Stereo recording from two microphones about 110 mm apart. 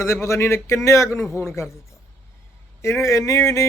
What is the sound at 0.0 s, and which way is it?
Speech, 25° left (ahead or behind).